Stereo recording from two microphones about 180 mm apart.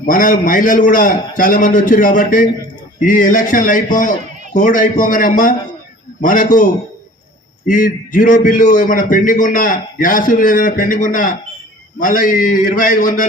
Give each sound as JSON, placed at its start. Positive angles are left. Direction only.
{"t": 0.0, "sound": "a man's voice", "side_deg": 50}
{"t": 7.7, "sound": "a man's voice", "side_deg": 50}